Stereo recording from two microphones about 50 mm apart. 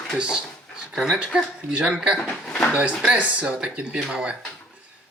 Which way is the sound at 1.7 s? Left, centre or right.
Centre.